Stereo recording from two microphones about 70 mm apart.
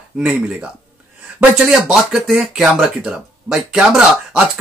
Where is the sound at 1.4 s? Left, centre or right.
Centre.